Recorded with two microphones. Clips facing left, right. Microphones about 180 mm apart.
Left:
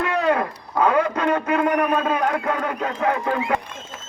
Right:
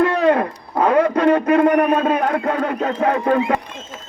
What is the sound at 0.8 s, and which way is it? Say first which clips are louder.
A man's voice: right 4 dB; 30° right (ahead or behind).